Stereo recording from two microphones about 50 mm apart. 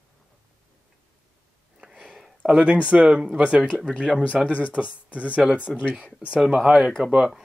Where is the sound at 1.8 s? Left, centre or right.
Centre.